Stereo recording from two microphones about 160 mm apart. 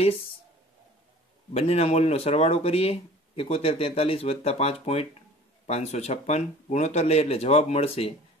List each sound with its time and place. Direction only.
1.5 s speech: 40° left (ahead or behind)